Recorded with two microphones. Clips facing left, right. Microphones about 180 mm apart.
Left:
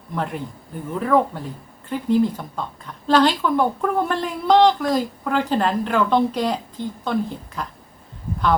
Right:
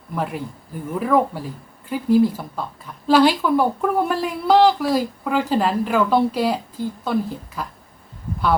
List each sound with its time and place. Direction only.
0.1 s a woman's voice: 5° right (ahead or behind)